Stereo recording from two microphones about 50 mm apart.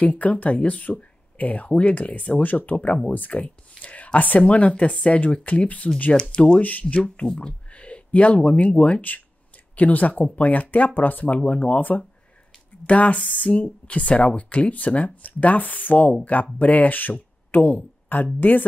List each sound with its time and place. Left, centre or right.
0.0 s speech: left
6.1 s speech: centre
6.6 s speech: left